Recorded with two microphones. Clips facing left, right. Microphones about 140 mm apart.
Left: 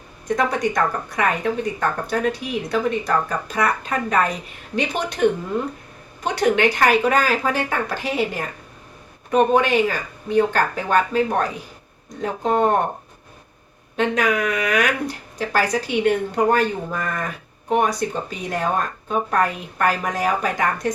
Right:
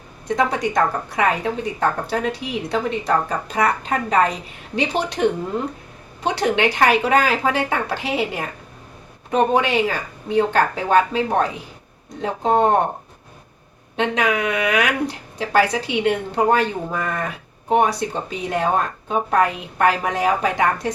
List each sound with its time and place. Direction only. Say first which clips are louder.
0.3 s a woman's voice: even; 25° right (ahead or behind)
9.3 s a woman's voice: left 1 dB; 25° right (ahead or behind)
13.9 s a woman's voice: even; 25° right (ahead or behind)